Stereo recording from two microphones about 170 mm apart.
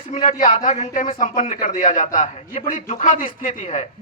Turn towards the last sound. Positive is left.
turn(degrees=45)  # may be behind; listen again after turning